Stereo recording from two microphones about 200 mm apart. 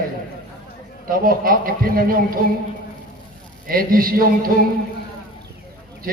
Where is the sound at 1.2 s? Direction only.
45° right (ahead or behind).